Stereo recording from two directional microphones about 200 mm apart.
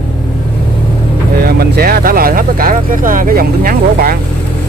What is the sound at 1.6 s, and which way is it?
Speech, 50° right (ahead or behind).